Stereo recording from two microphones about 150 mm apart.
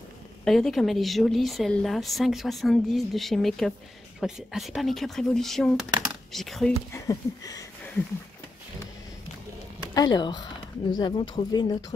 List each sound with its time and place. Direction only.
0.5 s a woman's voice: centre (ahead or behind)
6.0 s a sound: centre (ahead or behind)
6.9 s speech: 20° left (ahead or behind)
9.9 s speech: 30° left (ahead or behind)